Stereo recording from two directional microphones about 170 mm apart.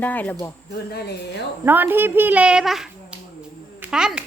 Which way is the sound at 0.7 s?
70° left (ahead or behind).